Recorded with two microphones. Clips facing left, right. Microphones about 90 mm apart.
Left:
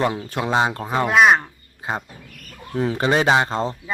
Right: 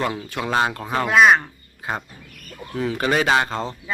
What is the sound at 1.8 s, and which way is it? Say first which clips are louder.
Speech: left 1 dB; 25° left (ahead or behind).